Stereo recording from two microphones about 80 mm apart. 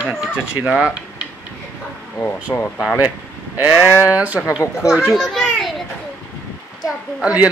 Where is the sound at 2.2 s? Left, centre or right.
Left.